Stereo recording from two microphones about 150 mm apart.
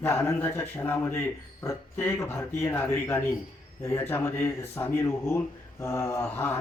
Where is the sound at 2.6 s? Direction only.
20° left (ahead or behind).